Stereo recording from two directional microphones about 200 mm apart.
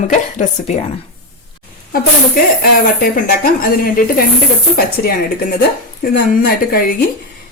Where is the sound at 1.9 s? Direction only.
45° left (ahead or behind).